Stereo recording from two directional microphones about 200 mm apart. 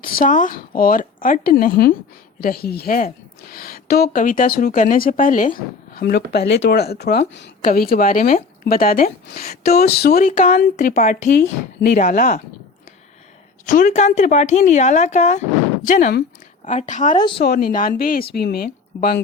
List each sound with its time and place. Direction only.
0.0 s speech: 45° left (ahead or behind); by 7.5 s 60° left (ahead or behind)
7.6 s speech: 45° left (ahead or behind)
13.7 s a woman's voice: 40° left (ahead or behind)
17.3 s speech: 50° left (ahead or behind)